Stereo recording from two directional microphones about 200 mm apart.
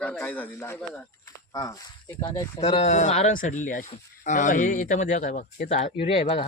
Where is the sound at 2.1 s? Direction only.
20° left (ahead or behind).